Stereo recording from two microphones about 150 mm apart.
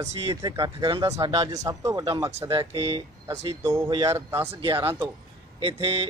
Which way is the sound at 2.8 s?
35° right (ahead or behind).